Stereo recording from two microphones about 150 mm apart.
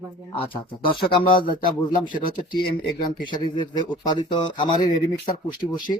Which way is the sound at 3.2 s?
35° left (ahead or behind).